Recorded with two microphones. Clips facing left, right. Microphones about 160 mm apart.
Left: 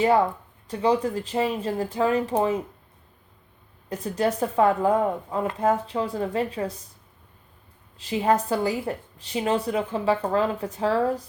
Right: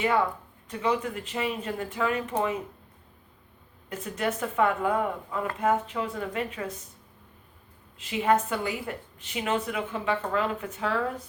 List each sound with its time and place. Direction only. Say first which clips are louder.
0.7 s a woman's voice: left 5 dB; 35° left (ahead or behind)
3.8 s a woman's voice: left 5 dB; 35° left (ahead or behind)
7.9 s a woman's voice: left 2 dB; 35° left (ahead or behind)